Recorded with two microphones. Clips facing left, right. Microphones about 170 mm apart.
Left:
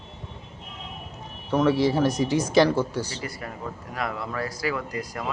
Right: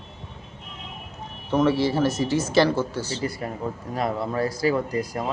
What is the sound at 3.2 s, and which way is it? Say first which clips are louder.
Speech: right 6 dB; 30° right (ahead or behind).